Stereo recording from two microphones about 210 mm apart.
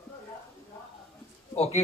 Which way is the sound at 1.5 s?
30° left (ahead or behind).